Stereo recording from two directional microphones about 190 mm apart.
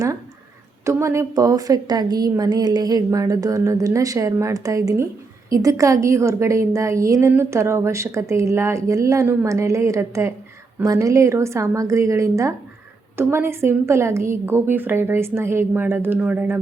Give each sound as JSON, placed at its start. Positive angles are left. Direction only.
{"t": 0.9, "sound": "a woman's voice", "side_deg": -15}